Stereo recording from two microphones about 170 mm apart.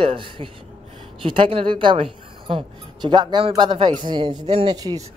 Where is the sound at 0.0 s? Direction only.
30° right (ahead or behind).